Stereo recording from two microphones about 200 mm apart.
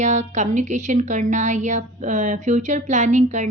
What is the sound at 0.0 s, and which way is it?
A woman's voice, 35° right (ahead or behind).